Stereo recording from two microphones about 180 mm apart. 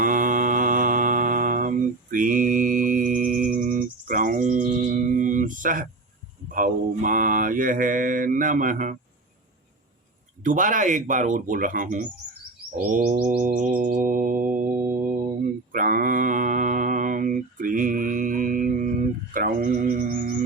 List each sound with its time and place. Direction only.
0.0 s mantra: 50° right (ahead or behind)
10.4 s mantra: 45° right (ahead or behind)
15.7 s mantra: 50° right (ahead or behind)
19.3 s a sound: 50° right (ahead or behind)
20.0 s music: 45° right (ahead or behind)